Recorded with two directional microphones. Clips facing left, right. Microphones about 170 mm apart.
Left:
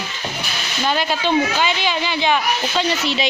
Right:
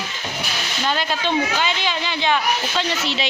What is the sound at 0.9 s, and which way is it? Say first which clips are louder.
Speech: left 3 dB; 15° left (ahead or behind).